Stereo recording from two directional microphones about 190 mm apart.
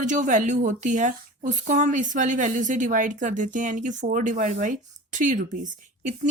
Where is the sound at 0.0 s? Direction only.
40° right (ahead or behind).